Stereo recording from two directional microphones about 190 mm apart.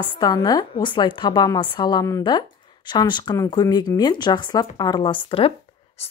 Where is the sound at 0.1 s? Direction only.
20° left (ahead or behind).